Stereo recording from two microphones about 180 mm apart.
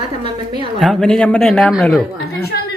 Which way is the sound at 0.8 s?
Centre (ahead or behind).